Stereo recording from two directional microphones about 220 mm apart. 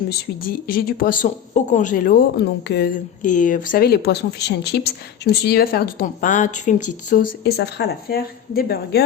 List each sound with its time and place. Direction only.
0.1 s speech: 40° left (ahead or behind)
7.4 s speech: 50° left (ahead or behind)